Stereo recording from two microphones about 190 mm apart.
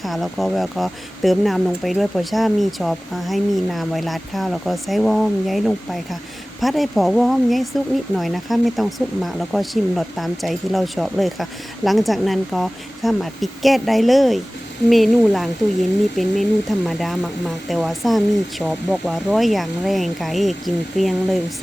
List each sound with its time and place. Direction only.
0.0 s speech: centre (ahead or behind)